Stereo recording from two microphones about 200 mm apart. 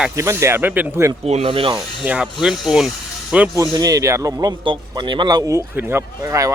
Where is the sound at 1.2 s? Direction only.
30° right (ahead or behind).